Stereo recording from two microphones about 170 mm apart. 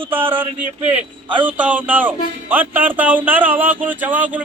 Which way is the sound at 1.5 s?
10° right (ahead or behind).